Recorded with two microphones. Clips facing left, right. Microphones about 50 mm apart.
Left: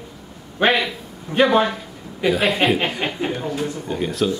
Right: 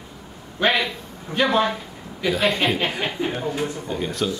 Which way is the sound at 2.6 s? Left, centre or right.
Centre.